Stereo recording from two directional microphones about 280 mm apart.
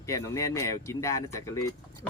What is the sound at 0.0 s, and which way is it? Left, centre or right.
Speech, centre.